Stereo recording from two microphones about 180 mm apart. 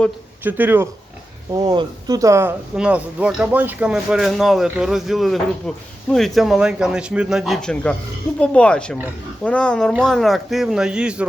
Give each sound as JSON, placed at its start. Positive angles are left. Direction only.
{"t": 0.4, "sound": "speech", "side_deg": -10}
{"t": 2.7, "sound": "speech", "side_deg": -5}